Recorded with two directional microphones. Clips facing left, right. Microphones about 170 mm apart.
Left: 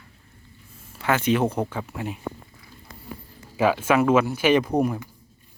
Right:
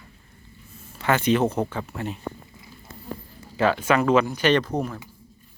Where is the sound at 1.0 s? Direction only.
5° left (ahead or behind).